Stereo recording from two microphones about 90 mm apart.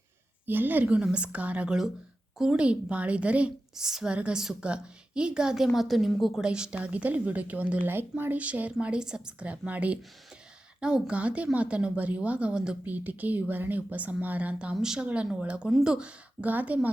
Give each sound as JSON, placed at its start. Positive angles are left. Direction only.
{"t": 0.4, "sound": "a woman's voice", "side_deg": -20}